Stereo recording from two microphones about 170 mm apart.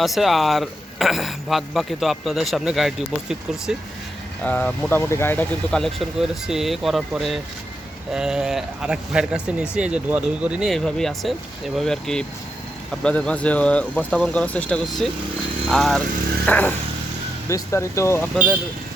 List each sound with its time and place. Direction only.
0.0 s speech: centre (ahead or behind)
4.4 s speech: 5° left (ahead or behind)